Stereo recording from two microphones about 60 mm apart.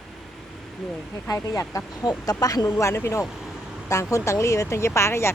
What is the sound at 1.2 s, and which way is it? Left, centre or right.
Speech, left.